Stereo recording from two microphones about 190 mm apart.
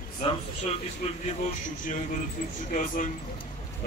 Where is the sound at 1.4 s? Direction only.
45° left (ahead or behind).